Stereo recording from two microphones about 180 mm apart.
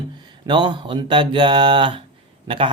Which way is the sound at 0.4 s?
25° right (ahead or behind).